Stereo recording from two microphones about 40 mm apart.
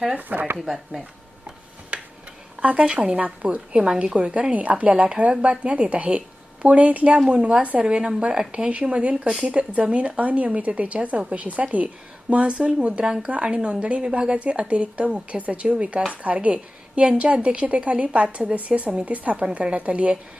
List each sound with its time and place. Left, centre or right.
0.2 s speech: right
0.6 s speech: centre
1.9 s a sound: right
2.6 s speech: right
3.8 s a woman's voice: centre; by 11.9 s right
12.3 s a woman's voice: right